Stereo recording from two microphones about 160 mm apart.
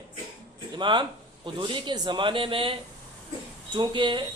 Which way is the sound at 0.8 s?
30° right (ahead or behind).